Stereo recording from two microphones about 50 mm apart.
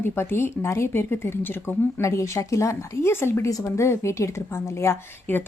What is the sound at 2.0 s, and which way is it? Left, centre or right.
Speech, left.